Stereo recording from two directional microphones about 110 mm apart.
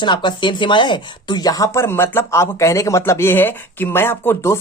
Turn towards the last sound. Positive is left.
turn(degrees=25)  # may be behind; listen again after turning